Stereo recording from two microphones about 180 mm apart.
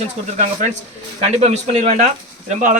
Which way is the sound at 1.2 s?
40° right (ahead or behind).